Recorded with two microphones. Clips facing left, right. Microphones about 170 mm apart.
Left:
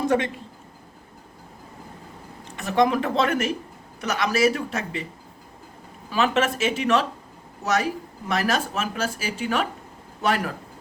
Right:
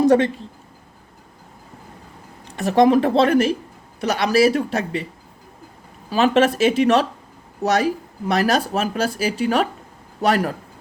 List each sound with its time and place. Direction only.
0.0 s speech: 35° right (ahead or behind)
2.6 s speech: 35° right (ahead or behind)
6.1 s speech: 35° right (ahead or behind)